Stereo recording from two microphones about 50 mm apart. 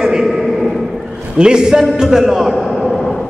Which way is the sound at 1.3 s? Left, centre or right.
Centre.